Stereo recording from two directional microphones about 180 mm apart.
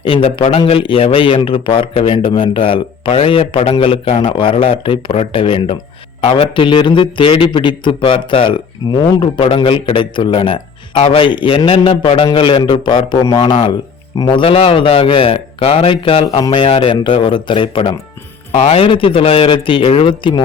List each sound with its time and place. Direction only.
0.0 s a man's voice: 30° left (ahead or behind)